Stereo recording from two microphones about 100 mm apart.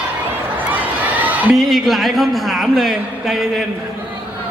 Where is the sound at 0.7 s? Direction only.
15° right (ahead or behind).